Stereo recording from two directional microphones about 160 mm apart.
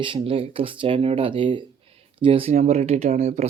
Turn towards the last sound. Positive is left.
turn(degrees=-45)  # may be behind; listen again after turning